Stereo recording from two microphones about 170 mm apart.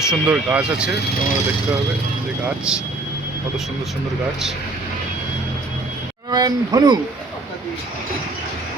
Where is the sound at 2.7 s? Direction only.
5° right (ahead or behind).